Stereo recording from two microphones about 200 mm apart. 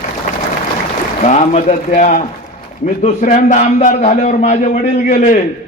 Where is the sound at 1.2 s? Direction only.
35° left (ahead or behind).